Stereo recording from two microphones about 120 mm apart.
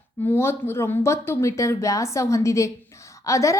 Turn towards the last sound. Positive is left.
turn(degrees=25)  # may be behind; listen again after turning